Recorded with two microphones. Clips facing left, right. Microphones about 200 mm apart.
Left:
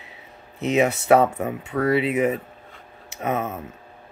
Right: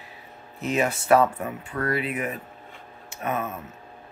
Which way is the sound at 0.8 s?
70° left (ahead or behind).